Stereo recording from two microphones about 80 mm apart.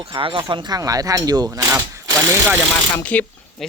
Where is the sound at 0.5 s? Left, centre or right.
Right.